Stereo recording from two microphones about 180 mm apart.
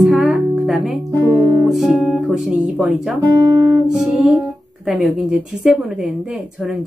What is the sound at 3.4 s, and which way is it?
Guitar, 20° right (ahead or behind).